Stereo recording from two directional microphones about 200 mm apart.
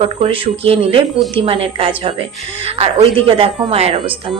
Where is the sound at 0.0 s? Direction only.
30° right (ahead or behind).